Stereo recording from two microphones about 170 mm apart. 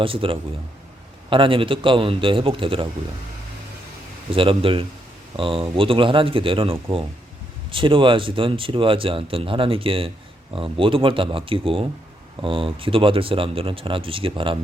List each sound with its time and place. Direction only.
0.0 s speech: 30° right (ahead or behind)
4.3 s speech: 30° right (ahead or behind)